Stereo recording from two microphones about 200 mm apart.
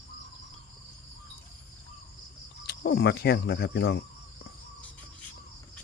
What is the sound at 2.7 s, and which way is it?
Speech, 55° left (ahead or behind).